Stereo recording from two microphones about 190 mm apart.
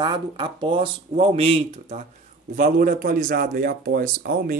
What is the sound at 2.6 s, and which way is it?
Speech, 45° right (ahead or behind).